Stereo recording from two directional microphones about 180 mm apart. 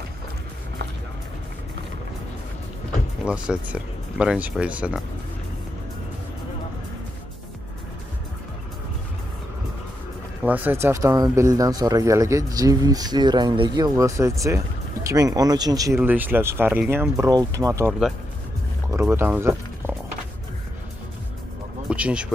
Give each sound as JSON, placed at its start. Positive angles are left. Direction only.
{"t": 3.3, "sound": "speech", "side_deg": -5}
{"t": 10.4, "sound": "speech", "side_deg": -10}
{"t": 16.0, "sound": "speech", "side_deg": -10}
{"t": 18.9, "sound": "speech", "side_deg": -10}
{"t": 21.8, "sound": "speech", "side_deg": -5}